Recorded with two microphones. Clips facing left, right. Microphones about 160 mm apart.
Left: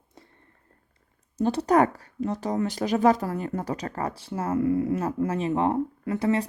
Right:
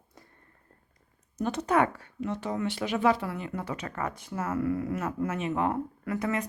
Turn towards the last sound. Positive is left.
turn(degrees=30)  # may be behind; listen again after turning